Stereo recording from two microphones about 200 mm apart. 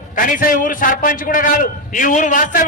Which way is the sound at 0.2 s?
45° left (ahead or behind).